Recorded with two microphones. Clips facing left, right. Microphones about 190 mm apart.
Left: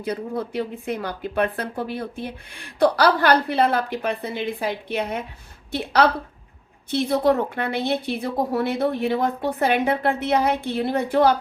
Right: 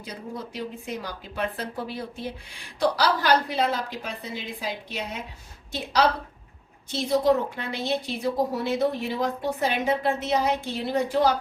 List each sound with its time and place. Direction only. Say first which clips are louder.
0.0 s speech: left 9 dB; 60° left (ahead or behind)